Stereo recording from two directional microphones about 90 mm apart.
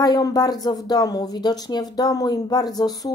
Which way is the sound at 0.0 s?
45° left (ahead or behind).